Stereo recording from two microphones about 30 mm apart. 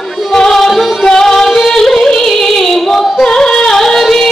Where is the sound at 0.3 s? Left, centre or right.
Centre.